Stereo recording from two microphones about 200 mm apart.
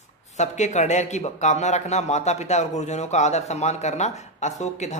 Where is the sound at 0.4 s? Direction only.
35° left (ahead or behind).